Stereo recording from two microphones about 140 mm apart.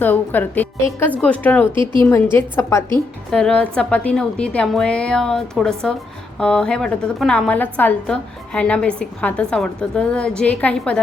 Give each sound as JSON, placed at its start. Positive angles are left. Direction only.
{"t": 0.0, "sound": "a woman's voice", "side_deg": 15}
{"t": 1.7, "sound": "a woman's voice", "side_deg": -35}
{"t": 2.0, "sound": "a woman's voice", "side_deg": 20}
{"t": 3.3, "sound": "a woman's voice", "side_deg": 5}